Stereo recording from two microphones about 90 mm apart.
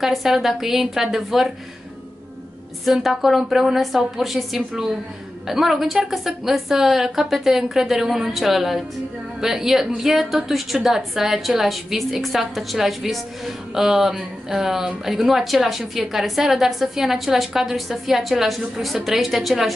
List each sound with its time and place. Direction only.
0.0 s a woman's voice: centre (ahead or behind)
2.8 s a woman's voice: 5° right (ahead or behind)